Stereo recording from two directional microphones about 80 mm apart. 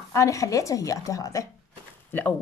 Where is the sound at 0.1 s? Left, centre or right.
Left.